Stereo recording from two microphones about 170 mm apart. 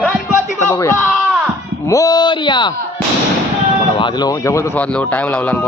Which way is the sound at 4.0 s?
25° left (ahead or behind).